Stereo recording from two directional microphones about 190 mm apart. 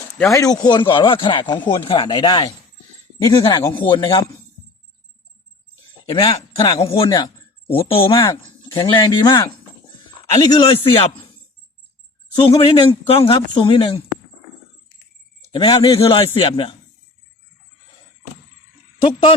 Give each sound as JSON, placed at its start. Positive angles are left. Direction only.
{"t": 0.2, "sound": "speech", "side_deg": 15}
{"t": 6.7, "sound": "speech", "side_deg": 30}
{"t": 12.4, "sound": "speech", "side_deg": 30}
{"t": 15.5, "sound": "speech", "side_deg": 20}